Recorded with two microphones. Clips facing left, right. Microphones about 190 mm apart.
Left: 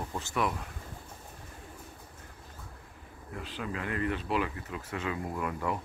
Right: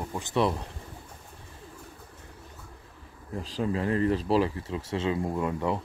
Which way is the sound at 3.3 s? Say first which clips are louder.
Right 8 dB; 30° right (ahead or behind).